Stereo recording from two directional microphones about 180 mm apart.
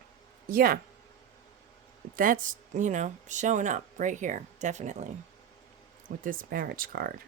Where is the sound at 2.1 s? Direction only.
50° right (ahead or behind).